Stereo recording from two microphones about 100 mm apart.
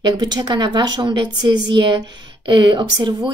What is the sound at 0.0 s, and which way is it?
A woman's voice, 45° right (ahead or behind).